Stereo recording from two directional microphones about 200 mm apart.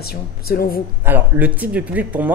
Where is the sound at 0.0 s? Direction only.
50° left (ahead or behind).